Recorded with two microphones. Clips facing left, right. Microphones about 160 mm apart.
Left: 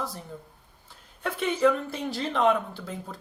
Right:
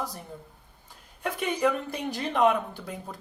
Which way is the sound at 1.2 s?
15° right (ahead or behind).